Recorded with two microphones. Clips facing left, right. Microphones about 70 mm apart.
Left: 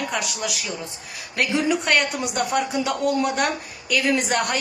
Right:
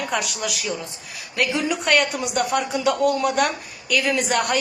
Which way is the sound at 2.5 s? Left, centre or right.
Left.